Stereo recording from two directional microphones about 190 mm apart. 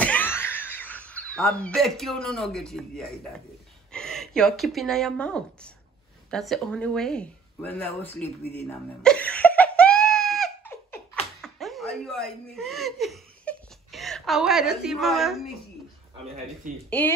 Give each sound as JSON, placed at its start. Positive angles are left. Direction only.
{"t": 0.0, "sound": "speech", "side_deg": 10}
{"t": 6.3, "sound": "a sound", "side_deg": 0}
{"t": 11.4, "sound": "chuckle", "side_deg": 0}